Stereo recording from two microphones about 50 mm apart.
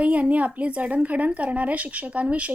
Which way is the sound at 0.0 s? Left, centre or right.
Right.